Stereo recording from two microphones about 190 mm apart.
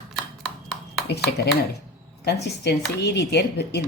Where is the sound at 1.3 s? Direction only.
60° left (ahead or behind).